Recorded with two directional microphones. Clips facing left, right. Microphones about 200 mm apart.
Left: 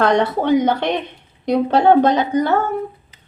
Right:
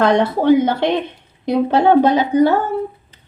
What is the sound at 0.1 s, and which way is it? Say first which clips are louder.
Speech: right 3 dB; 10° right (ahead or behind).